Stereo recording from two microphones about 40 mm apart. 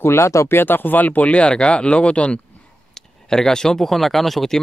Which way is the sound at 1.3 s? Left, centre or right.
Left.